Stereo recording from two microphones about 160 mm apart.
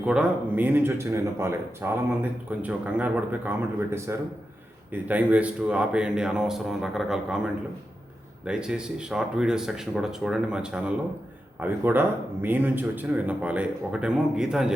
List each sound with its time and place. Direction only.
0.0 s speech: 5° right (ahead or behind)